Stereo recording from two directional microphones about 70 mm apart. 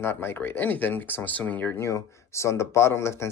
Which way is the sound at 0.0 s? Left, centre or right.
Left.